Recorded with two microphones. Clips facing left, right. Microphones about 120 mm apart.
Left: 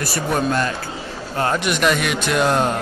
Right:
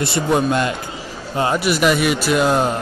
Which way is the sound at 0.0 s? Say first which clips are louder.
Right 3 dB; 20° right (ahead or behind).